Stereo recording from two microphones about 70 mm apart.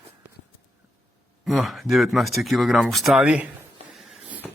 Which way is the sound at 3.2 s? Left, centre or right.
Centre.